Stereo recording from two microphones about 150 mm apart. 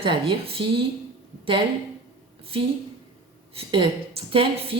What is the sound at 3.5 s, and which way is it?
Speech, 35° right (ahead or behind).